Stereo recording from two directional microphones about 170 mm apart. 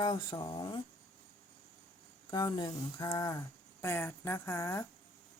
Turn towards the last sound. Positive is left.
turn(degrees=15)  # may be behind; listen again after turning